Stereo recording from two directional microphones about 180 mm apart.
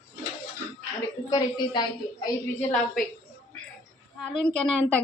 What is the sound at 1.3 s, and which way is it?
Speech, 20° left (ahead or behind).